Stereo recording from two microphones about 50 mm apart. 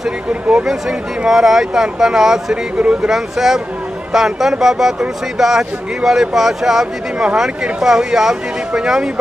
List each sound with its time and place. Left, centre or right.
0.3 s speech: right
0.7 s speech: centre